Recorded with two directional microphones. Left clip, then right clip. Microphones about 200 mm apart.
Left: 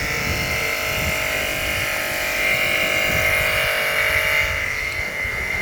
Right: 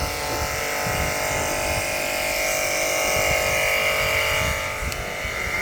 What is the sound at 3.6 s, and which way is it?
Music, 15° right (ahead or behind).